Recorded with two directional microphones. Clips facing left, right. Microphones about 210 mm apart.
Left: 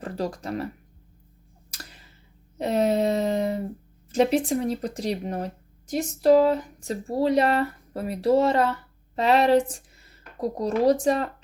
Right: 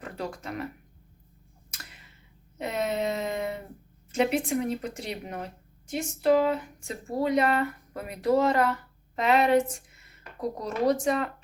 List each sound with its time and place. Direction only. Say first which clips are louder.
0.0 s speech: left 6 dB; 35° left (ahead or behind)
1.7 s tick-tock: left 4 dB; 35° left (ahead or behind)
2.6 s a sound: left 7 dB; 35° left (ahead or behind)
4.1 s speech: left 4 dB; 35° left (ahead or behind)